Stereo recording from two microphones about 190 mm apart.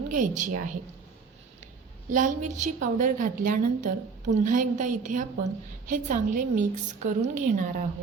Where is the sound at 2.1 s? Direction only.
45° right (ahead or behind).